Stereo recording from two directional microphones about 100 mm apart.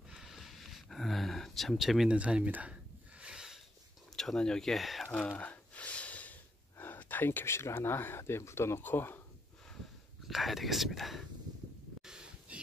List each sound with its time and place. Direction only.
0.1 s a sound: 5° right (ahead or behind)
4.2 s speech: 5° left (ahead or behind)
5.2 s gasp: 15° left (ahead or behind)
6.8 s speech: 20° left (ahead or behind)
10.2 s speech: centre (ahead or behind)
12.0 s a sound: 5° right (ahead or behind)